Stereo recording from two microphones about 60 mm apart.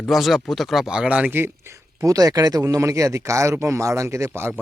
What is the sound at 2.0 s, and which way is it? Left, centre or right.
Speech, right.